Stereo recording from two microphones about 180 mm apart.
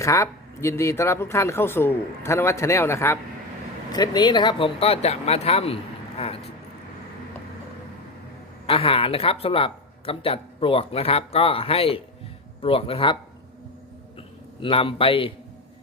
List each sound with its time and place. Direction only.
0.0 s speech: 15° left (ahead or behind); by 6.4 s 30° left (ahead or behind)
8.6 s speech: 30° left (ahead or behind)
14.6 s a man's voice: 30° left (ahead or behind)